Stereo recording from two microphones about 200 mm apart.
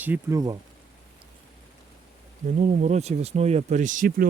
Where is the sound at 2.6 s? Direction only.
35° right (ahead or behind).